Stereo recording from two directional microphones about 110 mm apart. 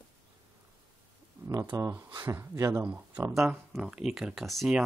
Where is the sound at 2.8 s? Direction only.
10° right (ahead or behind).